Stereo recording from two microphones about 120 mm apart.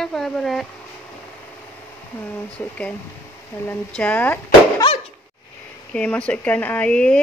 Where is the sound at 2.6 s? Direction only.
15° left (ahead or behind).